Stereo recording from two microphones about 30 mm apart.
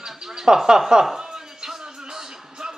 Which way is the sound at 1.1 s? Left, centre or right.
Right.